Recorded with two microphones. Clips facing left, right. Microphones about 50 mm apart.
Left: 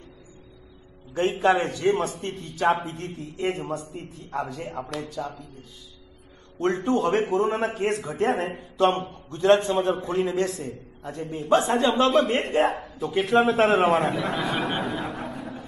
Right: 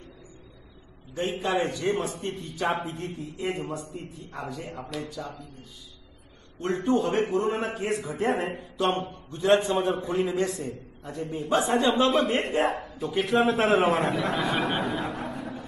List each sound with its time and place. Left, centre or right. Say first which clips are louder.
1.8 s a man's voice: left 4 dB; centre
6.6 s a man's voice: left 2 dB; left
7.2 s a man's voice: left 2 dB; centre